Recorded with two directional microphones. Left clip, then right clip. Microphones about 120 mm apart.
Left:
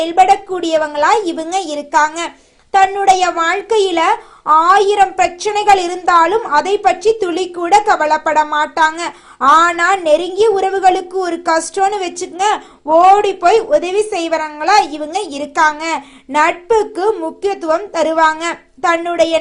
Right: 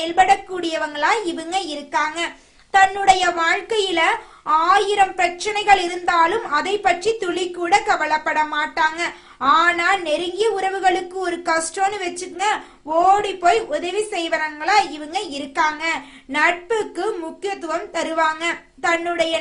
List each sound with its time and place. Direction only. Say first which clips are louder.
0.0 s a child's voice: left 5 dB; 35° left (ahead or behind)
2.7 s a child's voice: left 4 dB; 25° left (ahead or behind)
12.2 s a woman's voice: left 6 dB; 60° left (ahead or behind)
13.2 s a woman's voice: left 6 dB; 50° left (ahead or behind)